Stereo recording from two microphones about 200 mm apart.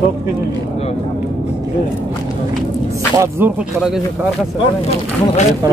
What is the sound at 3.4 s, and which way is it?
Speech, 10° right (ahead or behind).